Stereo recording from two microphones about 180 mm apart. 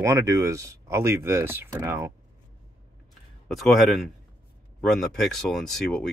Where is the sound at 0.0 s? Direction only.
15° right (ahead or behind).